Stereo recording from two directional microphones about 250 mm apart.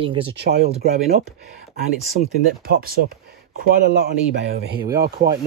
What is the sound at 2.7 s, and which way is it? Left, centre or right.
Speech, right.